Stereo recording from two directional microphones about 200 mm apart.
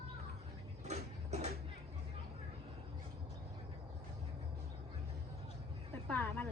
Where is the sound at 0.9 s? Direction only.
35° right (ahead or behind).